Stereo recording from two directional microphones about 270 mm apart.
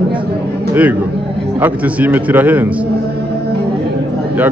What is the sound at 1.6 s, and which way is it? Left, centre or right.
A man's voice, centre.